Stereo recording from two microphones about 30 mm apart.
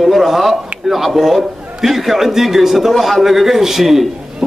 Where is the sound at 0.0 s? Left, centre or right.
Centre.